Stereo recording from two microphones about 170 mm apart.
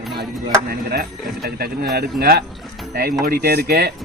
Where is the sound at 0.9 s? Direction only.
65° right (ahead or behind).